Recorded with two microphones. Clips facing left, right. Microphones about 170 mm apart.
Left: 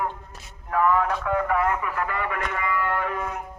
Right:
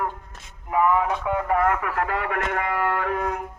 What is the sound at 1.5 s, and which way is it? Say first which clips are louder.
Radio: right 6 dB; 50° right (ahead or behind).